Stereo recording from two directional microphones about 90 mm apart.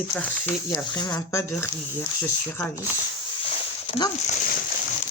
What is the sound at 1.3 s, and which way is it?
Speech, 30° left (ahead or behind).